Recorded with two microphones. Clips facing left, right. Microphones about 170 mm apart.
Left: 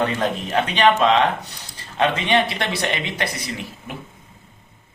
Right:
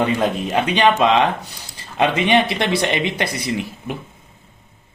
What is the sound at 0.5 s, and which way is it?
Speech, 15° right (ahead or behind).